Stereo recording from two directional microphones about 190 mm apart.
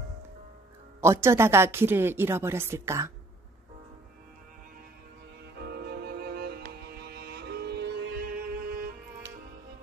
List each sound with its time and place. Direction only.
1.0 s a woman's voice: 15° right (ahead or behind)
5.6 s music: 60° right (ahead or behind)